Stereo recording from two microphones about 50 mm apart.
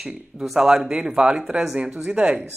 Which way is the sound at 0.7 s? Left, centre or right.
Centre.